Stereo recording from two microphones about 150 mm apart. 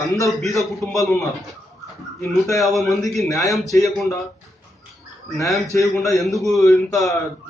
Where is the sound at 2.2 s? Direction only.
20° left (ahead or behind).